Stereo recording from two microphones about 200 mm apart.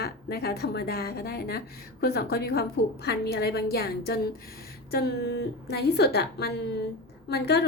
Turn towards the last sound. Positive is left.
turn(degrees=55)  # may be behind; listen again after turning